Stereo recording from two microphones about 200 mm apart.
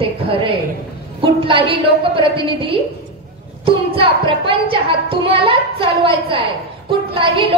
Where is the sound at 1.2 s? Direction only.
25° right (ahead or behind).